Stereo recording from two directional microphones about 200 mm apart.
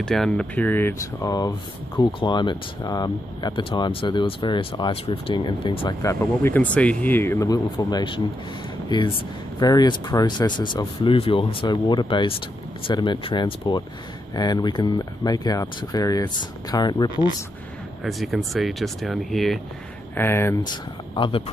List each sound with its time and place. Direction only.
0.0 s speech: 5° left (ahead or behind); by 17.4 s 20° left (ahead or behind)
18.0 s speech: centre (ahead or behind)
20.2 s speech: 10° left (ahead or behind)